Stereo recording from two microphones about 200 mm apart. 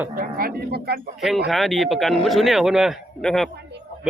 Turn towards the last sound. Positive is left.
turn(degrees=0)  # may be behind; listen again after turning